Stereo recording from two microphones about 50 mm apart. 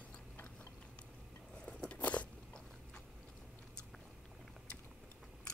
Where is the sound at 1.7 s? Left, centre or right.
Left.